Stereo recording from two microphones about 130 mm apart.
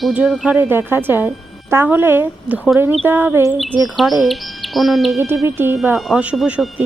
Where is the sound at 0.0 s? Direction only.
5° right (ahead or behind).